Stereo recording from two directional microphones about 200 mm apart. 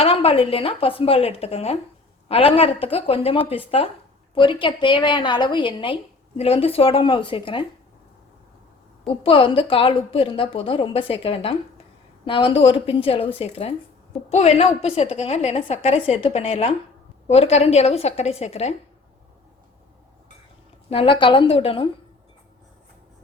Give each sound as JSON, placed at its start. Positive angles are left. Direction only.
{"t": 0.0, "sound": "a woman's voice", "side_deg": 30}
{"t": 9.2, "sound": "a woman's voice", "side_deg": 25}
{"t": 20.9, "sound": "a woman's voice", "side_deg": 25}